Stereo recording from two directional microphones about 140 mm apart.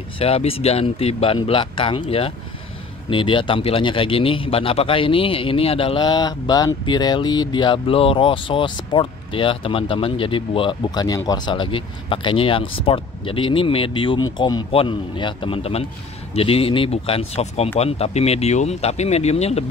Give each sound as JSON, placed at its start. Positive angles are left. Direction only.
{"t": 0.2, "sound": "speech", "side_deg": 45}